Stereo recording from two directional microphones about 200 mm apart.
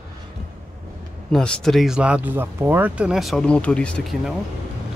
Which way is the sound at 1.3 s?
5° left (ahead or behind).